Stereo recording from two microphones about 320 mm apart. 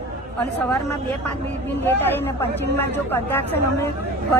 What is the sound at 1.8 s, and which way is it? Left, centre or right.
Speech, centre.